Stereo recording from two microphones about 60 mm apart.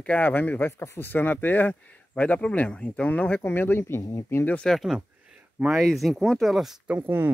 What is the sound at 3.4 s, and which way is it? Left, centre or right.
Speech, left.